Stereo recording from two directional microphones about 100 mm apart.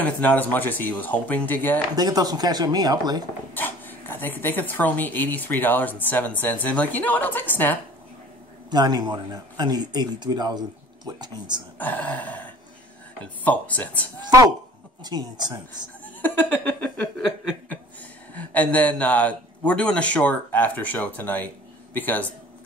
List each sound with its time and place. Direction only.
0.0 s a man's voice: 15° left (ahead or behind)
2.0 s speech: 40° right (ahead or behind)
3.5 s a man's voice: 20° left (ahead or behind)
8.6 s speech: 45° right (ahead or behind)
11.8 s a man's voice: 15° left (ahead or behind)
15.0 s speech: 45° right (ahead or behind)
16.2 s a sound: 15° left (ahead or behind)
18.3 s a man's voice: 15° left (ahead or behind)